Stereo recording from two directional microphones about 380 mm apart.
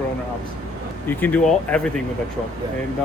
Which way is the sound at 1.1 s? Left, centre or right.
Centre.